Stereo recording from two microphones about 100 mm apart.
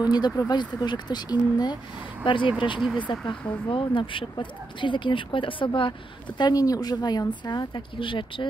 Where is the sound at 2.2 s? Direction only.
55° left (ahead or behind).